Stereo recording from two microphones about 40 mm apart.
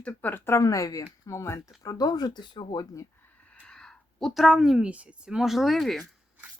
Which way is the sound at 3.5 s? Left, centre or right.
Left.